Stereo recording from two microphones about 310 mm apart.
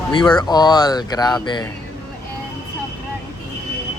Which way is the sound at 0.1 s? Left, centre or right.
Centre.